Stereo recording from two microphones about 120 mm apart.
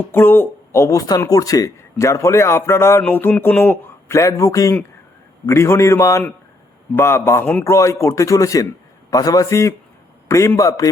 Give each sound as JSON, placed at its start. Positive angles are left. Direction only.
{"t": 0.0, "sound": "speech", "side_deg": 20}